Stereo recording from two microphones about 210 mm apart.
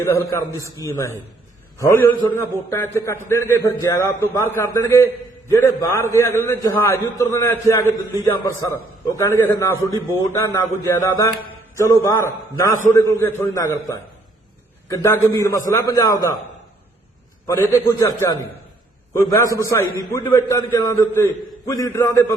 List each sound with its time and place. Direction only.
0.0 s a man's voice: 15° left (ahead or behind)
17.4 s a man's voice: 15° left (ahead or behind)